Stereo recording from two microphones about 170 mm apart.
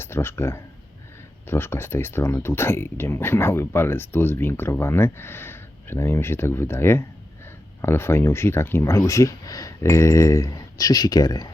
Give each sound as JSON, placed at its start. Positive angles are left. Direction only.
{"t": 0.0, "sound": "speech", "side_deg": 15}